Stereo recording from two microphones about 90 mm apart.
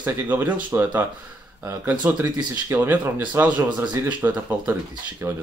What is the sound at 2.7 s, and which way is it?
Speech, 20° right (ahead or behind).